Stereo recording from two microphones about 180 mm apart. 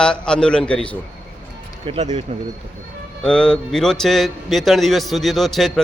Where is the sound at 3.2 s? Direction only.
5° left (ahead or behind).